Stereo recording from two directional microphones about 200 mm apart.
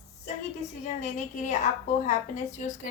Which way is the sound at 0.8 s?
35° left (ahead or behind).